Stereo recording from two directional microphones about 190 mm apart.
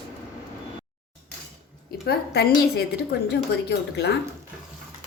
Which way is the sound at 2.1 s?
55° left (ahead or behind).